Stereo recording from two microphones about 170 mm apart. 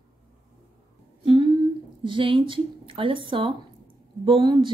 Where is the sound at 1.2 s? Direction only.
30° right (ahead or behind).